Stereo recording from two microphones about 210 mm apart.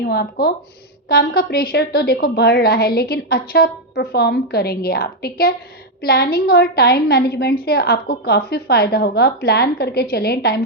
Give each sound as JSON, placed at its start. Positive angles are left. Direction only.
{"t": 0.0, "sound": "a woman's voice", "side_deg": 50}